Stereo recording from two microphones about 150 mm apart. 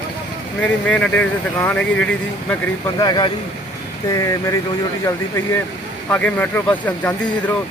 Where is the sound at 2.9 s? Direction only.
30° left (ahead or behind); by 7.5 s 10° left (ahead or behind).